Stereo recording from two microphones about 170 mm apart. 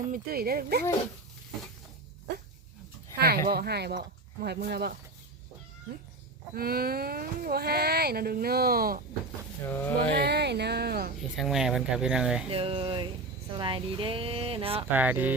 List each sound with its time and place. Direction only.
0.1 s speech: 60° right (ahead or behind)
3.2 s speech: 60° right (ahead or behind)
6.5 s speech: 65° right (ahead or behind)
9.6 s speech: 15° left (ahead or behind)
10.2 s speech: 75° right (ahead or behind)
11.2 s speech: centre (ahead or behind)
12.5 s speech: 35° right (ahead or behind)
14.9 s speech: 10° right (ahead or behind)